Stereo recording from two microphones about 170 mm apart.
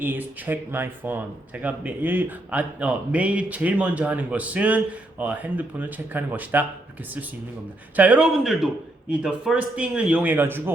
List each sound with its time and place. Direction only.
0.0 s speech: 10° right (ahead or behind)
7.9 s speech: 10° right (ahead or behind)